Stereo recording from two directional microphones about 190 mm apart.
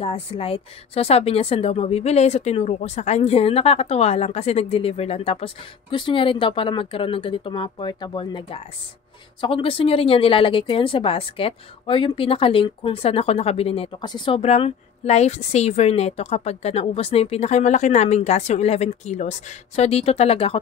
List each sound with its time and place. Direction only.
0.0 s speech: 30° left (ahead or behind)